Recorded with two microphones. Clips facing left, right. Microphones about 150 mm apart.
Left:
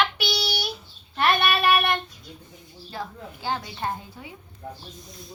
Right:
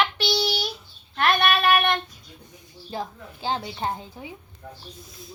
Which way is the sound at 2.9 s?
20° right (ahead or behind).